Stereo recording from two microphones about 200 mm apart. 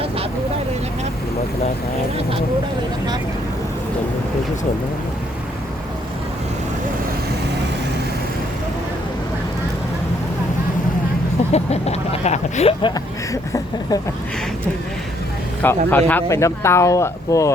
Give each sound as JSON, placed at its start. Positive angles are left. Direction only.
{"t": 11.5, "sound": "speech", "side_deg": 30}
{"t": 15.6, "sound": "speech", "side_deg": 10}